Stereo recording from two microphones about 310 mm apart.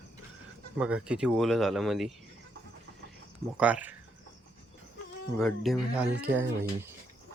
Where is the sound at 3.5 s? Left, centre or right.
Centre.